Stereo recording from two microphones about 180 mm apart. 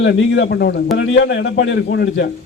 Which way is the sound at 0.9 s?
90° left.